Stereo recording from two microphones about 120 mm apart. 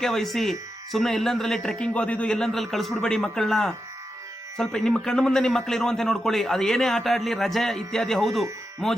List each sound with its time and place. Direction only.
0.0 s a man's voice: centre (ahead or behind)